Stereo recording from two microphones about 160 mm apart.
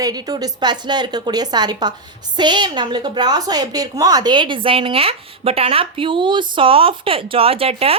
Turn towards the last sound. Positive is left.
turn(degrees=-35)  # may be behind; listen again after turning